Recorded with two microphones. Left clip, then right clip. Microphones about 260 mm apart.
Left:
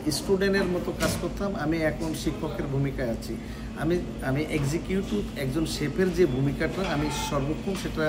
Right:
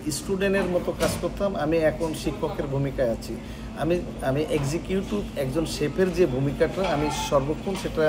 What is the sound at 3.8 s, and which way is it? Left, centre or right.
Speech, centre.